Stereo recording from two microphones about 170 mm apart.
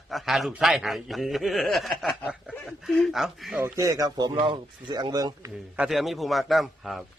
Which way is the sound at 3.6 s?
20° right (ahead or behind).